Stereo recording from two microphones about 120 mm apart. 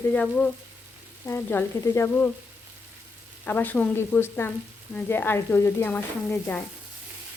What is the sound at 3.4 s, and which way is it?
Stir, 15° left (ahead or behind).